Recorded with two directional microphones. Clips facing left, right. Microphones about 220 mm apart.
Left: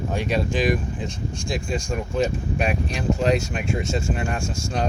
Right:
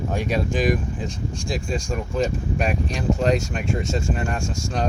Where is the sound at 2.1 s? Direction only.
5° left (ahead or behind).